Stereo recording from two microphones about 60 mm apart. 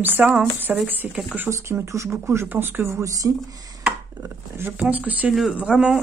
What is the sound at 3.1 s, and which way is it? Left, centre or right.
Speech, right.